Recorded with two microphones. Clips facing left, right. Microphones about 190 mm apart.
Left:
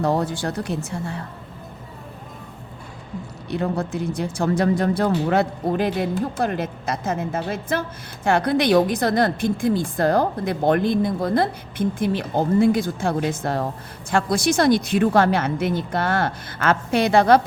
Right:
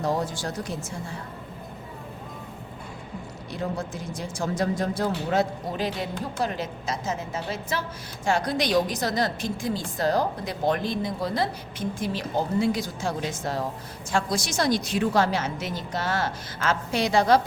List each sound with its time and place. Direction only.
0.0 s a woman's voice: 60° left (ahead or behind)
3.5 s a woman's voice: 60° left (ahead or behind)